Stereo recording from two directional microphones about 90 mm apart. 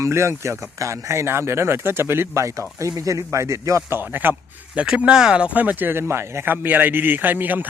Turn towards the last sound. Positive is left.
turn(degrees=-20)  # may be behind; listen again after turning